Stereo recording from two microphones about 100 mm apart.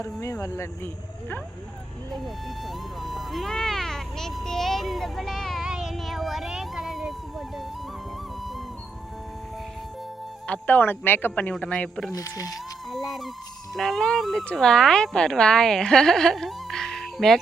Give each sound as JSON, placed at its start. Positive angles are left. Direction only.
{"t": 0.0, "sound": "speech", "side_deg": 30}
{"t": 2.1, "sound": "music", "side_deg": 0}
{"t": 10.4, "sound": "speech", "side_deg": 15}
{"t": 12.1, "sound": "speech", "side_deg": 35}
{"t": 12.9, "sound": "music", "side_deg": 0}
{"t": 13.7, "sound": "a woman's voice", "side_deg": 5}